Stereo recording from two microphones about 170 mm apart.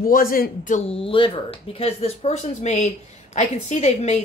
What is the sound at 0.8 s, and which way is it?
A woman's voice, 35° left (ahead or behind).